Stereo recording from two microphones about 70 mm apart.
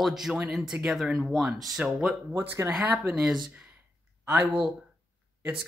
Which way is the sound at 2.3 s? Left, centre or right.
Right.